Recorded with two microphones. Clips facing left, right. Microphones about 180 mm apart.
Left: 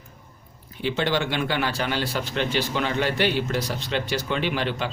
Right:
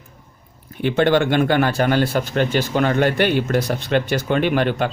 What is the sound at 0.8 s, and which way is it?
Speech, 55° right (ahead or behind).